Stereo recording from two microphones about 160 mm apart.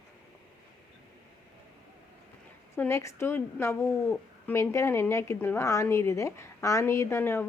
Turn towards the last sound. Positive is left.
turn(degrees=15)  # may be behind; listen again after turning